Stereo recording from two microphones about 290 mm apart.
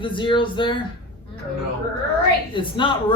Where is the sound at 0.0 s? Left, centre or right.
Centre.